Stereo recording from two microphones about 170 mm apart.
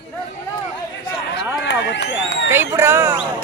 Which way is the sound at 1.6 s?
90° left.